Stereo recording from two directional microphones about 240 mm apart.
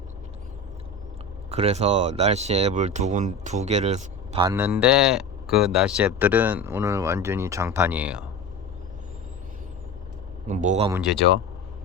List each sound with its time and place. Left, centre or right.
1.5 s speech: right
4.4 s speech: centre
10.4 s speech: right